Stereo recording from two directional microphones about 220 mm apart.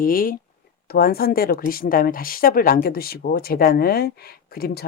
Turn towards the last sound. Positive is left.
turn(degrees=45)  # may be behind; listen again after turning